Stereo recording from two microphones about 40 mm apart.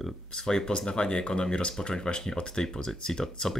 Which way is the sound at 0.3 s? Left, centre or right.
Centre.